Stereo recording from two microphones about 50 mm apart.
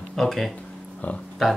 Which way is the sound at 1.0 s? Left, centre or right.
Left.